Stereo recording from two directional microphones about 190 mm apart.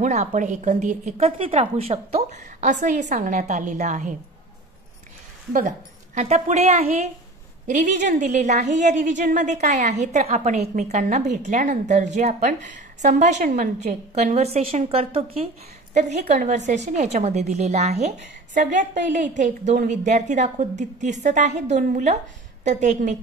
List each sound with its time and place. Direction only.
0.0 s a woman's voice: 35° right (ahead or behind)
5.5 s a woman's voice: 40° right (ahead or behind)